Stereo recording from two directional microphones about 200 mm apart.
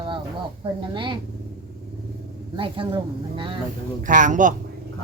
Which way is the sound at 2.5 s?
25° right (ahead or behind).